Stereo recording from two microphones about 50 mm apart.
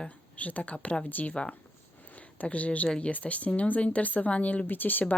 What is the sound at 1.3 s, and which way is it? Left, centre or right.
A woman's voice, left.